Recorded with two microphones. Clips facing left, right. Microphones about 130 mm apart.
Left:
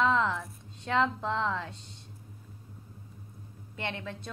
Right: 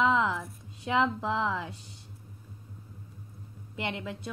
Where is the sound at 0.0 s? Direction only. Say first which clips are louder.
Right 1 dB; 10° right (ahead or behind).